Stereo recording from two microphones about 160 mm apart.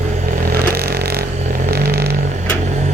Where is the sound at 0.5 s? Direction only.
75° right (ahead or behind).